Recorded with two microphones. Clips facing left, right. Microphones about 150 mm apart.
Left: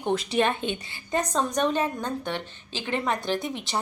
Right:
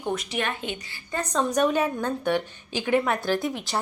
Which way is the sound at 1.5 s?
10° right (ahead or behind).